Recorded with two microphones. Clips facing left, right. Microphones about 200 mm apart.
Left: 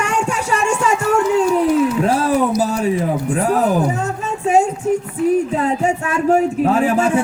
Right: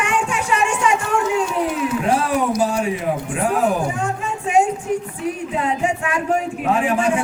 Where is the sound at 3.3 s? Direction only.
40° left (ahead or behind).